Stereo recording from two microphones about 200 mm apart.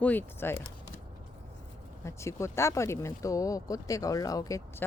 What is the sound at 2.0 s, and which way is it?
Speech, 15° left (ahead or behind).